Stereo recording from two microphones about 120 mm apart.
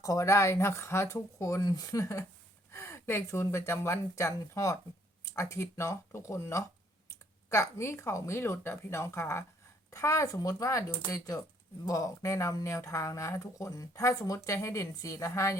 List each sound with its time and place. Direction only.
0.0 s speech: 30° left (ahead or behind)